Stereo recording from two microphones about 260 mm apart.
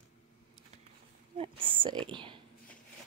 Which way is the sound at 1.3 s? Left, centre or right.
Centre.